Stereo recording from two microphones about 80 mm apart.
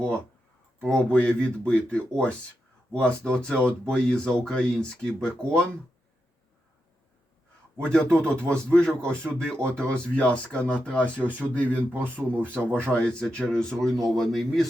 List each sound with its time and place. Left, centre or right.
0.8 s speech: centre
7.8 s a man's voice: centre